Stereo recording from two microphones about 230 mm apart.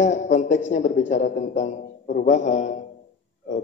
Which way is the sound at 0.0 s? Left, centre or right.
Left.